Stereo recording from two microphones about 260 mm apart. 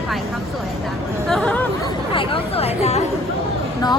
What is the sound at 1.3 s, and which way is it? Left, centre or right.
Chatter, centre.